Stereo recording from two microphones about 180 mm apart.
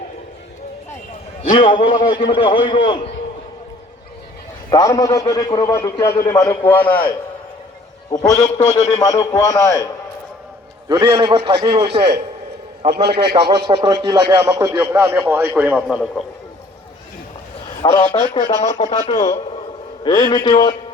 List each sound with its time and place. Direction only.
1.4 s a man's voice: 30° left (ahead or behind)
4.7 s a man's voice: 20° left (ahead or behind)
8.5 s a man's voice: 20° left (ahead or behind)
10.8 s a man's voice: 20° right (ahead or behind)
11.9 s a man's voice: 70° right (ahead or behind)
13.7 s a man's voice: 20° right (ahead or behind); by 16.2 s 5° right (ahead or behind)
17.8 s a man's voice: 30° left (ahead or behind)
18.6 s speech: 40° left (ahead or behind)
19.1 s a man's voice: 20° left (ahead or behind)